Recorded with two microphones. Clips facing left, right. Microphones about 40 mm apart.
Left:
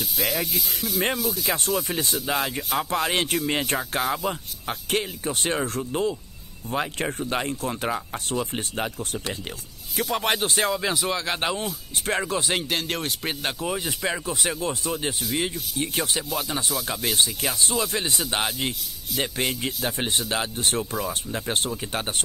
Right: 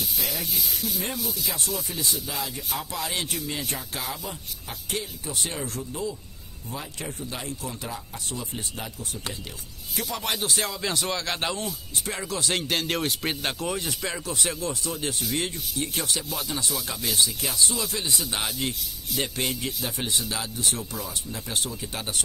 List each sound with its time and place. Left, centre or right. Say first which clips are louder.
0.9 s speech: left 6 dB; left
10.7 s speech: left 4 dB; centre
12.1 s speech: left 5 dB; left
12.5 s speech: even; centre
14.7 s speech: left 3 dB; left
15.1 s speech: left 2 dB; centre
15.8 s speech: left 3 dB; left
16.4 s speech: left 3 dB; left
18.2 s speech: left 3 dB; left
19.6 s speech: left 3 dB; left